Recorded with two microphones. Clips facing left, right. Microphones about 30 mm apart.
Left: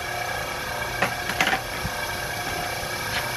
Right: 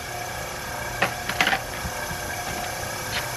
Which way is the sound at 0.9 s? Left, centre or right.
Centre.